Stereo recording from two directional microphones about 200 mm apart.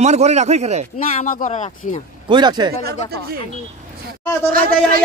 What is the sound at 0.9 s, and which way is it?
Speech, 40° left (ahead or behind).